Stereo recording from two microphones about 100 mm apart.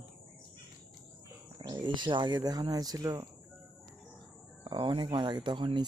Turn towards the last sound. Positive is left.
turn(degrees=-50)  # may be behind; listen again after turning